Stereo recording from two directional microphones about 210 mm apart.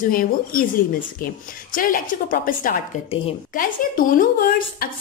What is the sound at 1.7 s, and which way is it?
A woman's voice, 40° left (ahead or behind).